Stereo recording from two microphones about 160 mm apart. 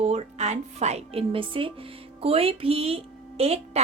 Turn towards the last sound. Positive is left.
turn(degrees=-40)  # may be behind; listen again after turning